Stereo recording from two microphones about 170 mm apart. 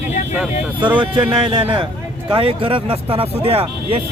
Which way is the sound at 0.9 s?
30° right (ahead or behind).